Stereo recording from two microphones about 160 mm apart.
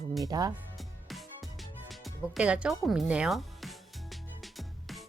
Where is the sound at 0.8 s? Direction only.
Centre (ahead or behind).